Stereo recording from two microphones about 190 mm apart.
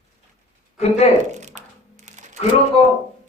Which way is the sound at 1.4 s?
40° right (ahead or behind).